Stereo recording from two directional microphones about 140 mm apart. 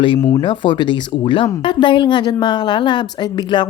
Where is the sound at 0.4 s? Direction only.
35° left (ahead or behind).